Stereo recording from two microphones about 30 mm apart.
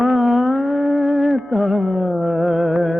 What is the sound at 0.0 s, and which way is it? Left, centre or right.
Music, centre.